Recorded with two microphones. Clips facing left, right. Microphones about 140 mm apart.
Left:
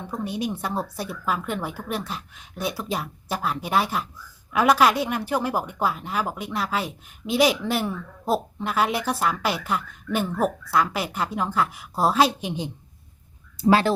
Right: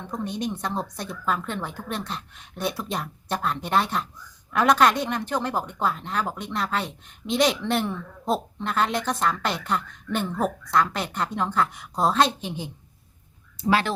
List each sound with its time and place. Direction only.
0.1 s a woman's voice: 5° left (ahead or behind)
13.6 s speech: 35° left (ahead or behind)